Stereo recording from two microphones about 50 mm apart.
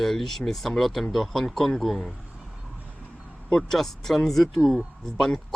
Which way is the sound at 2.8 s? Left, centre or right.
Left.